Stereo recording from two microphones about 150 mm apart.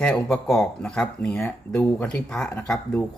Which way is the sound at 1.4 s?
20° left (ahead or behind).